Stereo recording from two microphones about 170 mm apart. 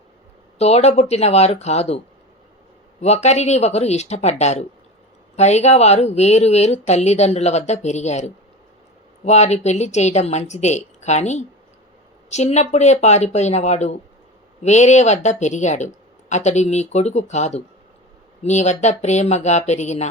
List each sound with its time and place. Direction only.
0.6 s speech: 40° left (ahead or behind)
3.0 s speech: 40° left (ahead or behind)